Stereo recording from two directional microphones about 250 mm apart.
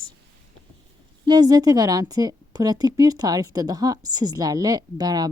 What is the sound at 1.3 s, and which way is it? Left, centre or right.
A woman's voice, centre.